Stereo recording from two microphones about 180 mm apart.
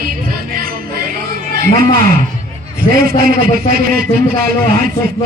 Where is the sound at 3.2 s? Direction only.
55° right (ahead or behind).